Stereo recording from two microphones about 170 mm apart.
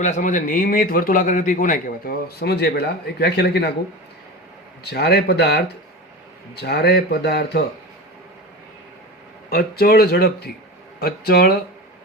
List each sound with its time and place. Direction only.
0.0 s a man's voice: 45° left (ahead or behind); by 3.8 s 75° left (ahead or behind)
4.8 s speech: 75° left (ahead or behind)
9.5 s a man's voice: 65° left (ahead or behind)